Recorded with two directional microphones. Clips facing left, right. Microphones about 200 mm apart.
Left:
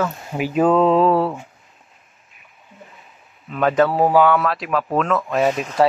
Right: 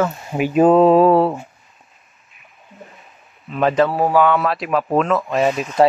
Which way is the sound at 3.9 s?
15° left (ahead or behind).